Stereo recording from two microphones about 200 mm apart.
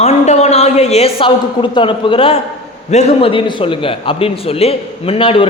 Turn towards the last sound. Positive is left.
turn(degrees=25)  # may be behind; listen again after turning